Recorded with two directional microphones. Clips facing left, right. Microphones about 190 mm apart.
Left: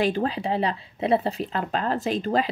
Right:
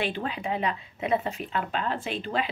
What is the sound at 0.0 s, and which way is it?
Speech, 40° left (ahead or behind).